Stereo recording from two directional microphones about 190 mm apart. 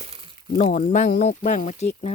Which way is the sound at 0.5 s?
40° left (ahead or behind).